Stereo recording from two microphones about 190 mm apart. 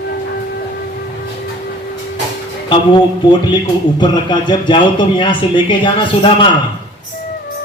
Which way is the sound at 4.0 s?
25° left (ahead or behind).